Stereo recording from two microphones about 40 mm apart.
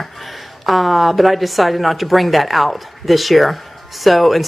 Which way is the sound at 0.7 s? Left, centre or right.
Centre.